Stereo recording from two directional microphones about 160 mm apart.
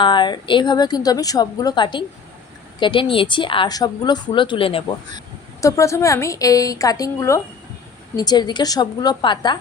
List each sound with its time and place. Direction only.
0.0 s a woman's voice: 30° left (ahead or behind)
5.5 s a woman's voice: 20° left (ahead or behind)